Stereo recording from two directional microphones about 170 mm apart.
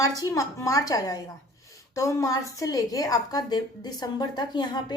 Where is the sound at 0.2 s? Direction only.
20° left (ahead or behind).